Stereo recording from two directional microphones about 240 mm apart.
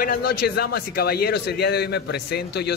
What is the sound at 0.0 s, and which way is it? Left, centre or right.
Speech, left.